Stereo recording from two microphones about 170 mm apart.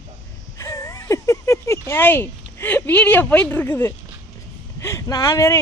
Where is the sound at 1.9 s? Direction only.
10° left (ahead or behind).